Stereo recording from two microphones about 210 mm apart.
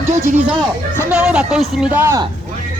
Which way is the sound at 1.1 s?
5° right (ahead or behind).